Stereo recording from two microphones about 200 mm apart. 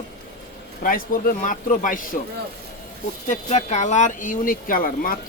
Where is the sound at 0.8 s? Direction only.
45° left (ahead or behind).